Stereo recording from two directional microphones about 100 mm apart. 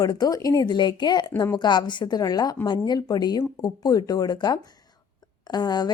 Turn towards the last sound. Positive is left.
turn(degrees=45)  # may be behind; listen again after turning